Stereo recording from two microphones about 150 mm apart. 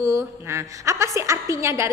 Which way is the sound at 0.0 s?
20° right (ahead or behind).